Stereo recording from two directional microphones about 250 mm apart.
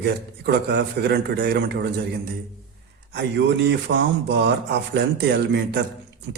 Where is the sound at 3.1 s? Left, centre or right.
Right.